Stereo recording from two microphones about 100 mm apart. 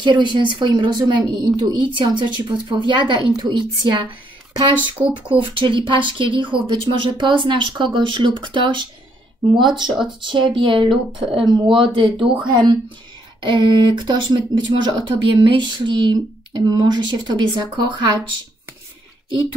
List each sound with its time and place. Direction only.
0.0 s speech: 50° right (ahead or behind)
5.0 s speech: 15° right (ahead or behind)
5.3 s a woman's voice: 60° right (ahead or behind)
9.8 s speech: 5° right (ahead or behind)
10.2 s a woman's voice: 55° right (ahead or behind)
13.4 s speech: 55° right (ahead or behind)